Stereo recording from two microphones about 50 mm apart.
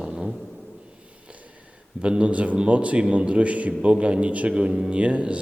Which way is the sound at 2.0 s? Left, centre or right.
Right.